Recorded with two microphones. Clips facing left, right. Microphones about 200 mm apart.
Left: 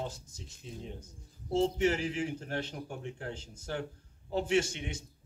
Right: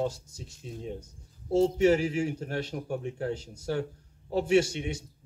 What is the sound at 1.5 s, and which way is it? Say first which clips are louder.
A man's voice: right 6 dB; 40° right (ahead or behind).